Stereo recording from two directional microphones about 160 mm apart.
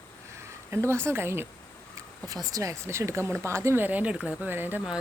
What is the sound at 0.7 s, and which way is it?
A woman's voice, 15° right (ahead or behind).